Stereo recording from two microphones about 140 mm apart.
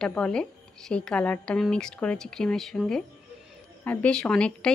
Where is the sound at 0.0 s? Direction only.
5° left (ahead or behind).